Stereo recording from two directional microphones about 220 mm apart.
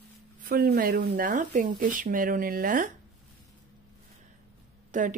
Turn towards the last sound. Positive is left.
turn(degrees=-35)  # may be behind; listen again after turning